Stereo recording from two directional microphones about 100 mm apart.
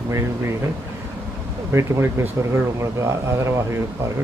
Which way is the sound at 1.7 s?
25° right (ahead or behind).